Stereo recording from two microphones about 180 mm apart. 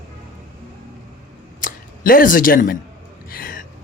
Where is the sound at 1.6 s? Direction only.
50° left (ahead or behind).